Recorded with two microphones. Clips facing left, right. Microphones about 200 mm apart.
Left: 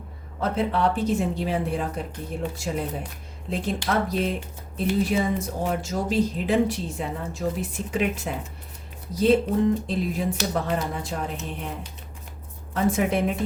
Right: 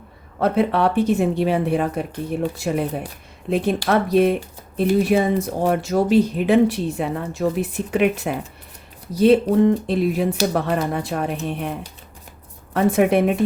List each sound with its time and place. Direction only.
0.3 s speech: 65° right (ahead or behind)
12.7 s speech: 65° right (ahead or behind)